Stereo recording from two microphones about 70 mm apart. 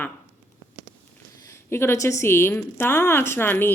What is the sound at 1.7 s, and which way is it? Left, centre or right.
A woman's voice, left.